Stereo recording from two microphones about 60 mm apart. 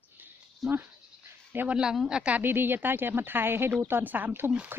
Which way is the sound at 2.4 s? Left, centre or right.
Right.